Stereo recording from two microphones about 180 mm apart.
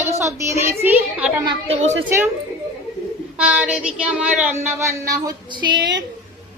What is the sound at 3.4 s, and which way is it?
Speech, 10° right (ahead or behind).